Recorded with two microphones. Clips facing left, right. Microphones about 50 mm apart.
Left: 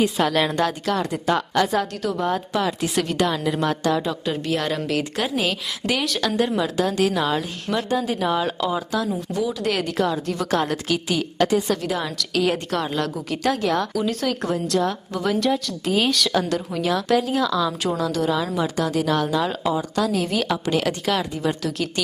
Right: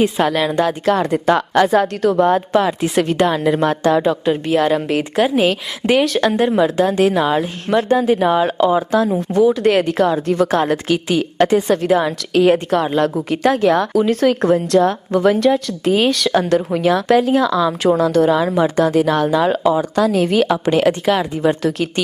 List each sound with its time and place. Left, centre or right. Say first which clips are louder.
0.0 s a woman's voice: right 5 dB; right
0.9 s a woman's voice: right 7 dB; right
2.6 s a woman's voice: right 6 dB; right
4.3 s a woman's voice: right 7 dB; right
7.7 s a woman's voice: right 9 dB; right
19.6 s a woman's voice: right 7 dB; right